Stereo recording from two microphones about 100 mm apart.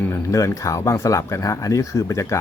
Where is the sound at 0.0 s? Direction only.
25° left (ahead or behind).